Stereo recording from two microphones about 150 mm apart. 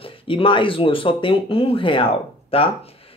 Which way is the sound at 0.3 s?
35° left (ahead or behind).